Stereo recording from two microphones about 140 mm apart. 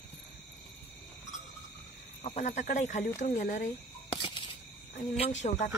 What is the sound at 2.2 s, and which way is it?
Speech, 50° left (ahead or behind).